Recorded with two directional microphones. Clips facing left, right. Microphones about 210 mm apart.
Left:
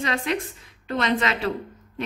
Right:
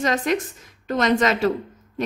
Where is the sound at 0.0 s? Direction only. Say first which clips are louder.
Right 4 dB; 45° right (ahead or behind).